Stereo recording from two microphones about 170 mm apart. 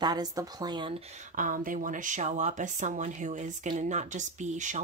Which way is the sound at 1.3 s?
55° right (ahead or behind).